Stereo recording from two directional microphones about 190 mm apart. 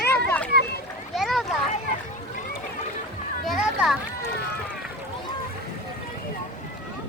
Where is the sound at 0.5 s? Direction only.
60° right (ahead or behind).